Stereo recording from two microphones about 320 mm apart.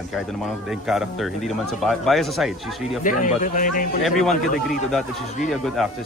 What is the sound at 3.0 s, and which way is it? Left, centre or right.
Speech, left.